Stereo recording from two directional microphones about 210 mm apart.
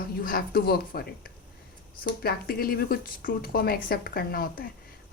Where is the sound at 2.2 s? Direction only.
45° left (ahead or behind).